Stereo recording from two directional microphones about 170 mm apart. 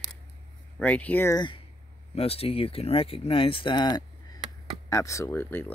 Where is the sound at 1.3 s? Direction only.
25° left (ahead or behind).